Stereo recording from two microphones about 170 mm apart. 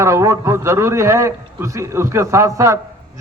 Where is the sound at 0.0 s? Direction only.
15° right (ahead or behind).